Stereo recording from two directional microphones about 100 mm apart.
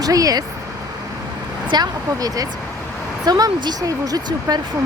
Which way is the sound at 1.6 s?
45° right (ahead or behind).